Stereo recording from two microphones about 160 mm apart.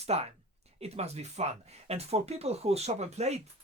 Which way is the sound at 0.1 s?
40° right (ahead or behind).